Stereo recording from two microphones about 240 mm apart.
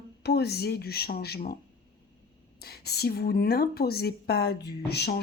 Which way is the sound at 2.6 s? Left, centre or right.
Left.